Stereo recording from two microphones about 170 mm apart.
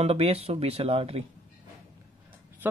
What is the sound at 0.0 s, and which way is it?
Speech, 35° right (ahead or behind).